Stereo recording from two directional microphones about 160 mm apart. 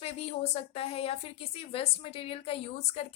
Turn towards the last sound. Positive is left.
turn(degrees=40)  # may be behind; listen again after turning